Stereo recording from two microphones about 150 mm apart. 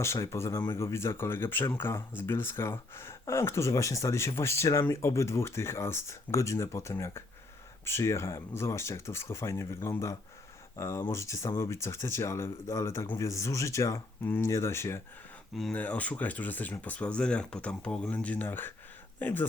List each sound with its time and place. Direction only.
0.0 s speech: 20° left (ahead or behind)
15.5 s speech: centre (ahead or behind)